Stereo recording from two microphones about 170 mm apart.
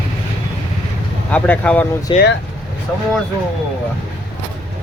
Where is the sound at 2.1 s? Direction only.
30° left (ahead or behind).